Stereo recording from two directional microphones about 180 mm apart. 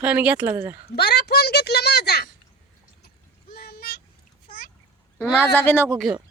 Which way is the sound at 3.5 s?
60° left (ahead or behind).